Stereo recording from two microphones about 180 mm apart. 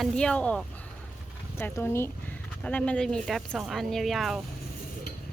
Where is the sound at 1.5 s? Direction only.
10° left (ahead or behind).